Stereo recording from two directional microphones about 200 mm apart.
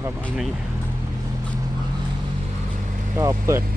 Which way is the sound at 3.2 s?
15° right (ahead or behind).